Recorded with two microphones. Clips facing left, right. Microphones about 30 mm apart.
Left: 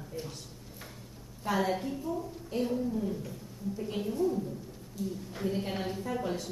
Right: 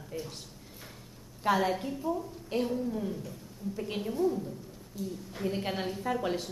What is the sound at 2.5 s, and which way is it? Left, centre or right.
Speech, right.